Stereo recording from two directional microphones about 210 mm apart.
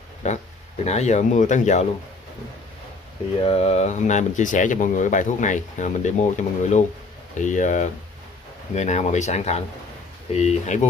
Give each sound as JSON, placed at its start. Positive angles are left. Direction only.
{"t": 0.2, "sound": "speech", "side_deg": 35}
{"t": 3.4, "sound": "speech", "side_deg": 30}